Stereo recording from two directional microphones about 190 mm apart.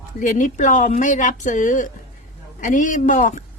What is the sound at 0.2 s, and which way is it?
A woman's voice, 45° left (ahead or behind).